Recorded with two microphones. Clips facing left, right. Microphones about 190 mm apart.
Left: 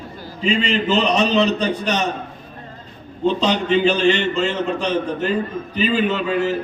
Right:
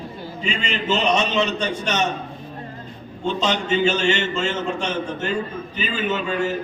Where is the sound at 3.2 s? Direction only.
35° left (ahead or behind).